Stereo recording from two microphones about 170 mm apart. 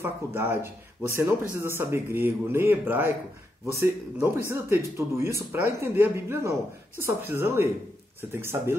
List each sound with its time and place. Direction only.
0.0 s speech: 15° right (ahead or behind)